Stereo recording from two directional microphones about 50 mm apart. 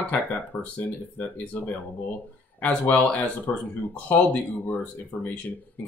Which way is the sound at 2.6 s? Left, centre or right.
Left.